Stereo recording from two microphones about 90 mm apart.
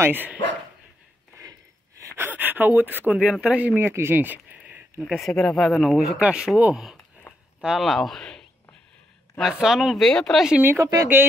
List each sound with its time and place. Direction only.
0.0 s speech: 20° right (ahead or behind)
1.4 s a sound: 40° right (ahead or behind)
2.1 s speech: 20° right (ahead or behind)
3.2 s speech: 10° right (ahead or behind)
3.8 s a sound: 25° right (ahead or behind)
5.0 s speech: centre (ahead or behind)
7.3 s a sound: 20° left (ahead or behind)
7.6 s speech: 5° right (ahead or behind)
9.4 s speech: 5° right (ahead or behind)
10.8 s speech: 40° right (ahead or behind)